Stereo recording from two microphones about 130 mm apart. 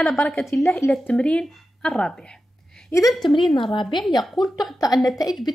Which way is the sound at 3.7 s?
35° left (ahead or behind).